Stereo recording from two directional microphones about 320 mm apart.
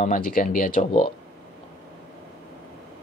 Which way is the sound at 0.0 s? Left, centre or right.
Left.